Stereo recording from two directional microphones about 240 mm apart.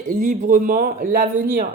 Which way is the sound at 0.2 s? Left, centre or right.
Right.